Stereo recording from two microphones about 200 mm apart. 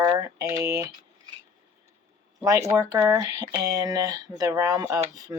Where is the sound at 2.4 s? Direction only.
15° right (ahead or behind).